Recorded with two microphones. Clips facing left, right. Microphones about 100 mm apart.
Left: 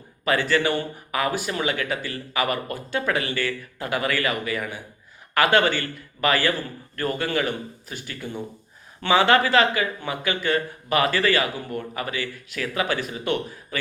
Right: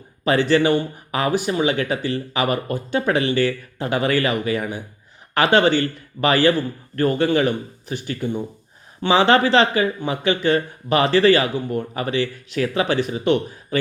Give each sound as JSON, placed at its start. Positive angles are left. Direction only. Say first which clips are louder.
{"t": 0.3, "sound": "speech", "louder": "right 5 dB", "side_deg": -25}